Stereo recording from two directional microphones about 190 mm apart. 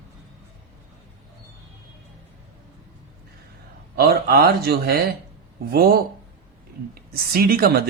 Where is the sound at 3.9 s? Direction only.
55° right (ahead or behind).